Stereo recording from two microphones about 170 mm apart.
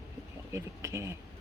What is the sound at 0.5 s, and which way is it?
Speech, 15° right (ahead or behind).